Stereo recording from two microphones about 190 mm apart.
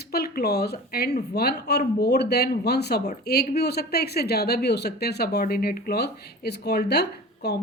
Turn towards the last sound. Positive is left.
turn(degrees=60)  # may be behind; listen again after turning